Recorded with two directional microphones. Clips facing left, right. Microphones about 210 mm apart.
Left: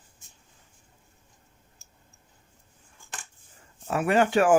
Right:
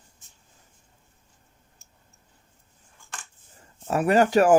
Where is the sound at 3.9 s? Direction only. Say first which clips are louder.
Right 3 dB; 40° right (ahead or behind).